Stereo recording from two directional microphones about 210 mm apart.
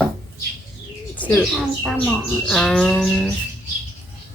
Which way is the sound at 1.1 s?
10° left (ahead or behind).